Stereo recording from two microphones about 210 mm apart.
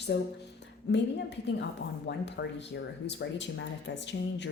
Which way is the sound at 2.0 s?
55° left (ahead or behind).